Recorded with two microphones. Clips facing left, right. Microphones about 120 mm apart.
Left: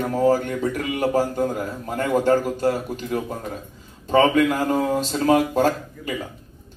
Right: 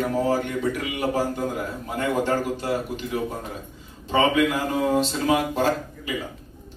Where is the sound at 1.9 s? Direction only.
40° left (ahead or behind).